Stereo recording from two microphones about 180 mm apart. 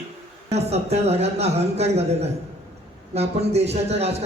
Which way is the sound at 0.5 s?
35° right (ahead or behind).